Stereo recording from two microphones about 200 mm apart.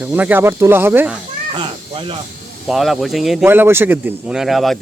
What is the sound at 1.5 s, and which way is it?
Speech, 25° right (ahead or behind).